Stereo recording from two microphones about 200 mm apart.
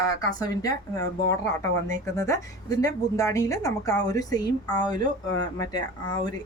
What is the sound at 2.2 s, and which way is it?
A woman's voice, 15° left (ahead or behind).